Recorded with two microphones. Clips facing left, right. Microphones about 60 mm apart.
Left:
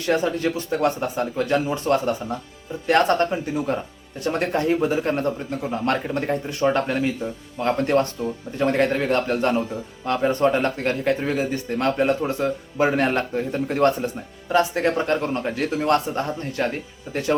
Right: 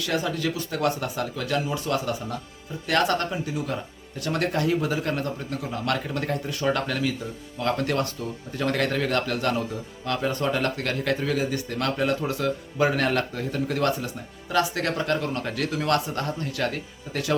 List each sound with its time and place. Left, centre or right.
0.0 s speech: left
4.2 s speech: left